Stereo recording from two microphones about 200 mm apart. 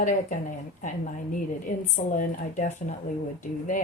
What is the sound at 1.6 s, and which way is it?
Speech, 40° left (ahead or behind).